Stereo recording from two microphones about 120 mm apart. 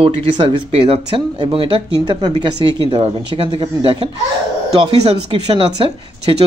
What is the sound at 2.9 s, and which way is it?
Speech, 50° right (ahead or behind).